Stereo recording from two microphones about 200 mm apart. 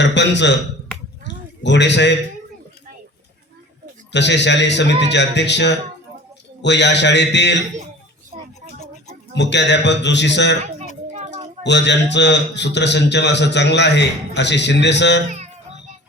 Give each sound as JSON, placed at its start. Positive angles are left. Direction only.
{"t": 0.0, "sound": "a man's voice", "side_deg": 60}
{"t": 1.6, "sound": "a man's voice", "side_deg": 60}
{"t": 4.1, "sound": "a man's voice", "side_deg": 60}
{"t": 9.3, "sound": "a man's voice", "side_deg": 60}
{"t": 11.1, "sound": "a sound", "side_deg": -35}
{"t": 11.6, "sound": "a man's voice", "side_deg": 60}
{"t": 15.3, "sound": "music", "side_deg": -35}